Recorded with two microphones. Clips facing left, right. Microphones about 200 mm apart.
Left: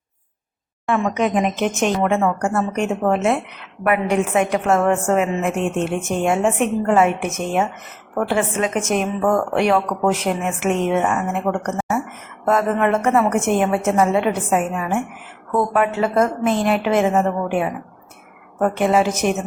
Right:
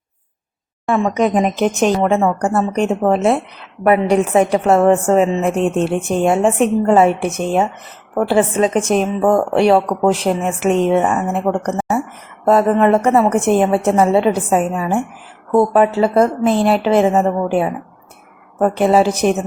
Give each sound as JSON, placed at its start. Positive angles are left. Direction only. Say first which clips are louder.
{"t": 0.9, "sound": "a woman's voice", "louder": "right 4 dB", "side_deg": -35}